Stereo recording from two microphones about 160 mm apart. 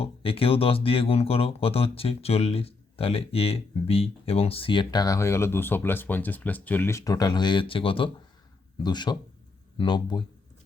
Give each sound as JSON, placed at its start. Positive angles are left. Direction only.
{"t": 0.0, "sound": "speech", "side_deg": 35}